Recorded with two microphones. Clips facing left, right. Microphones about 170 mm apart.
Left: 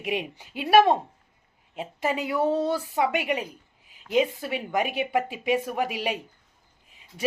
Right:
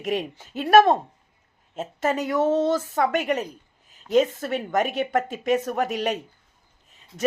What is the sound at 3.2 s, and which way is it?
Speech, 45° right (ahead or behind).